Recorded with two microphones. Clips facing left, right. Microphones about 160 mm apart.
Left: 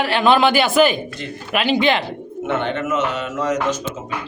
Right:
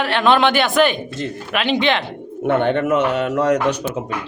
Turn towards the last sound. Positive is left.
turn(degrees=-65)  # may be behind; listen again after turning